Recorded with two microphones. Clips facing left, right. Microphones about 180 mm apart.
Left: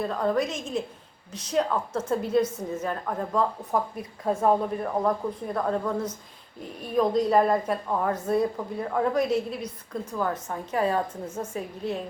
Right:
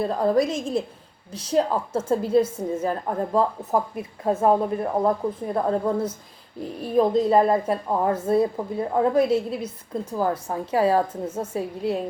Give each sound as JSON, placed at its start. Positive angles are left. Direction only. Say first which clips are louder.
{"t": 0.0, "sound": "a woman's voice", "louder": "right 5 dB", "side_deg": -35}